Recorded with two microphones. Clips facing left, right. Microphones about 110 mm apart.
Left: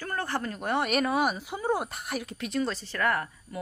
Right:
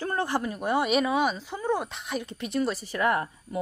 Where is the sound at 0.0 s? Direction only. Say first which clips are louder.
Right 4 dB; 20° right (ahead or behind).